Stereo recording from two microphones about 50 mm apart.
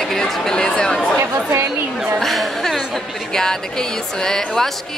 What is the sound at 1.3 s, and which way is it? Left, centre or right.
Chatter, right.